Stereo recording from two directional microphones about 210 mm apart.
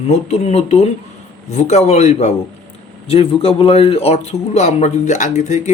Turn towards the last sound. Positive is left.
turn(degrees=35)  # may be behind; listen again after turning